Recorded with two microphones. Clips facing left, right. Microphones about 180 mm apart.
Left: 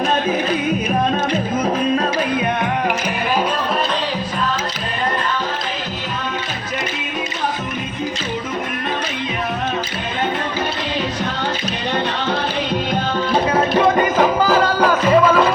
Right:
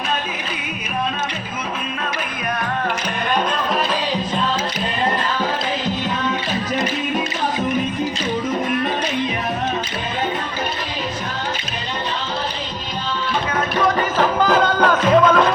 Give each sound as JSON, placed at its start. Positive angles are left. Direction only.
{"t": 13.3, "sound": "music", "side_deg": 35}
{"t": 14.4, "sound": "music", "side_deg": 5}